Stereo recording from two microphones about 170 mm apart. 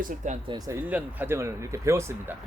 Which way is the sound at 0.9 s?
10° right (ahead or behind).